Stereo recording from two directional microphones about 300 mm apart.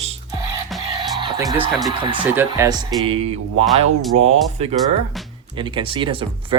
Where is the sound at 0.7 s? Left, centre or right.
Centre.